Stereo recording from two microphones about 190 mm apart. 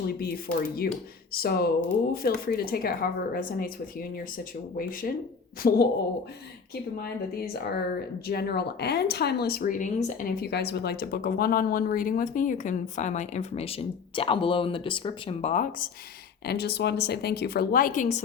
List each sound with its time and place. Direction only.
0.1 s speech: 55° left (ahead or behind)
7.0 s speech: 55° left (ahead or behind)
16.5 s speech: 55° left (ahead or behind); by 18.2 s 40° left (ahead or behind)